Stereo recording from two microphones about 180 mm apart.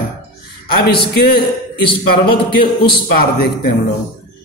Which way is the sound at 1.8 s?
30° left (ahead or behind).